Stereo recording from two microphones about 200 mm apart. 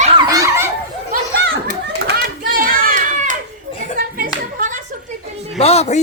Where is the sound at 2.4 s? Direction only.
45° right (ahead or behind).